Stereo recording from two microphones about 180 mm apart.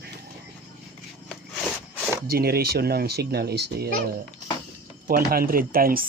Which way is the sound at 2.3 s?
60° right (ahead or behind).